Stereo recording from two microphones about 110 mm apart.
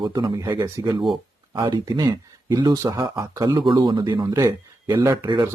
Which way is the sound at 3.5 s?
45° right (ahead or behind).